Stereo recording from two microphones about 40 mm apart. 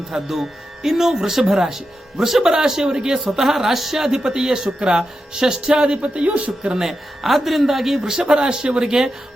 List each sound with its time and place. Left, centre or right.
0.3 s speech: centre
3.4 s speech: centre; by 6.5 s right
6.6 s speech: centre